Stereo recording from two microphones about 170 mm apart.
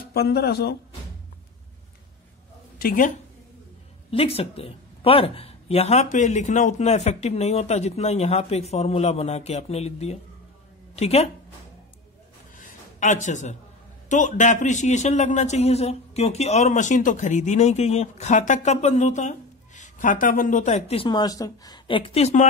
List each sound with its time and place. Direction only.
0.1 s a man's voice: 70° left (ahead or behind)
2.8 s a man's voice: 55° left (ahead or behind)
4.1 s speech: 35° left (ahead or behind)
12.5 s a sound: 50° left (ahead or behind)
14.0 s a man's voice: 50° left (ahead or behind)